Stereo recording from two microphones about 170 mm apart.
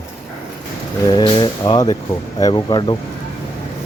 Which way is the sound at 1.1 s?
25° left (ahead or behind).